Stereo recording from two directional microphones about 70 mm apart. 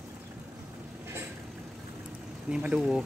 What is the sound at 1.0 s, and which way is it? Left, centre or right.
Vehicle, right.